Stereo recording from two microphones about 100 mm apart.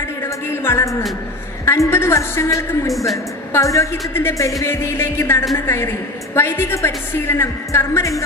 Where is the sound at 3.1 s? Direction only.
30° left (ahead or behind).